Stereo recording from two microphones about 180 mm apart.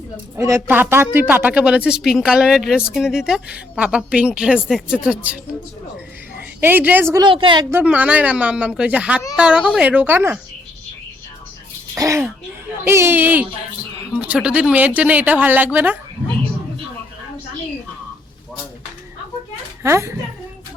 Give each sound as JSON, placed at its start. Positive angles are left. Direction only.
{"t": 0.3, "sound": "a woman's voice", "side_deg": -15}
{"t": 6.6, "sound": "speech", "side_deg": -10}
{"t": 7.3, "sound": "a woman's voice", "side_deg": -25}
{"t": 7.7, "sound": "speech", "side_deg": -10}
{"t": 11.9, "sound": "speech", "side_deg": -15}
{"t": 19.8, "sound": "speech", "side_deg": -15}